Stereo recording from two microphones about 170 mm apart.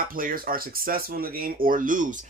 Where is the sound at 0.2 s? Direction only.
55° right (ahead or behind).